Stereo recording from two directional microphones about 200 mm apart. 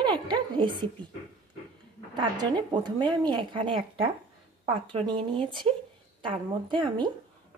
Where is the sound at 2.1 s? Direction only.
20° right (ahead or behind).